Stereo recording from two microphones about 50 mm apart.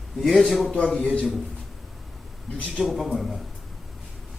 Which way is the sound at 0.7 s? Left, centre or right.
Centre.